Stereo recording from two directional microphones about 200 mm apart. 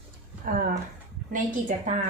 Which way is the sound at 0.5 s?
45° right (ahead or behind).